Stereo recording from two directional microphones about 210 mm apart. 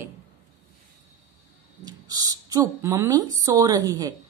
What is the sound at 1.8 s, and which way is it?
Speech, 20° right (ahead or behind).